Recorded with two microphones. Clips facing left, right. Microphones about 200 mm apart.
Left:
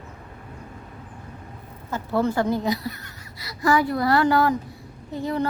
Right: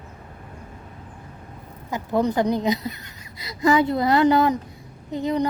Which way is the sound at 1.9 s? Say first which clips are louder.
Right 1 dB; 15° right (ahead or behind).